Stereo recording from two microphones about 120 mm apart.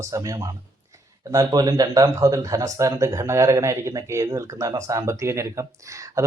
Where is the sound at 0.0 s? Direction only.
30° right (ahead or behind).